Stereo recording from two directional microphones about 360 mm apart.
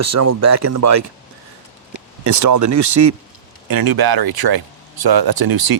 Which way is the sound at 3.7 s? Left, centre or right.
Right.